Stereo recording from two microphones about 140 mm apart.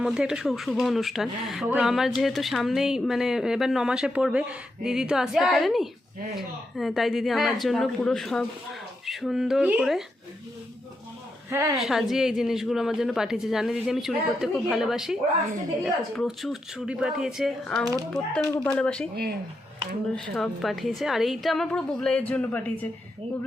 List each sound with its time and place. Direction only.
0.0 s speech: 5° right (ahead or behind)
11.4 s a woman's voice: 20° right (ahead or behind)
11.8 s speech: centre (ahead or behind)
17.8 s a woman's voice: 25° right (ahead or behind)
18.4 s speech: 15° left (ahead or behind)
20.1 s speech: 5° left (ahead or behind)